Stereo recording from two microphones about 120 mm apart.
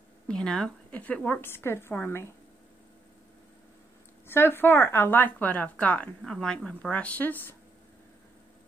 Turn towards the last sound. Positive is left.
turn(degrees=15)  # may be behind; listen again after turning